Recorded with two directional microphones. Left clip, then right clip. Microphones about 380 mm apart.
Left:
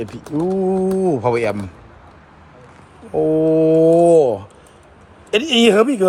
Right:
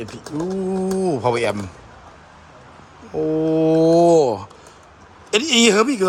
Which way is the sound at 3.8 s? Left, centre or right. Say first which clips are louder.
Left 1 dB; right.